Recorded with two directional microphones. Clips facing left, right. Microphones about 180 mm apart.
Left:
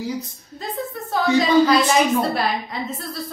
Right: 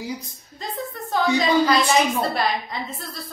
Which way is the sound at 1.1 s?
5° left (ahead or behind).